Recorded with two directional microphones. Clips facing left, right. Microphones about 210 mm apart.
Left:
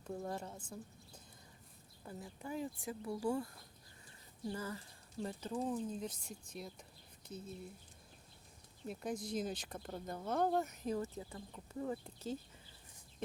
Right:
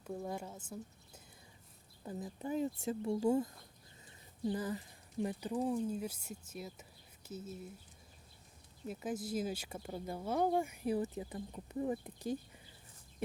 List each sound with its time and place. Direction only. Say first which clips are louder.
0.0 s speech: right 1 dB; 5° right (ahead or behind)
2.0 s speech: right 6 dB; 20° right (ahead or behind); by 7.7 s 5° right (ahead or behind)
8.9 s speech: right 2 dB; 5° right (ahead or behind)